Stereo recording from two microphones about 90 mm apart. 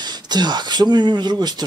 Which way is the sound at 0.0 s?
50° right (ahead or behind).